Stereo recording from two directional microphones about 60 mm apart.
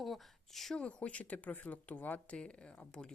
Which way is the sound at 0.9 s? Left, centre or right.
Left.